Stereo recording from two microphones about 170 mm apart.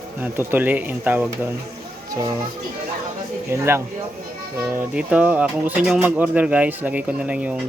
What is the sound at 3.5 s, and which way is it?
Speech, 15° right (ahead or behind).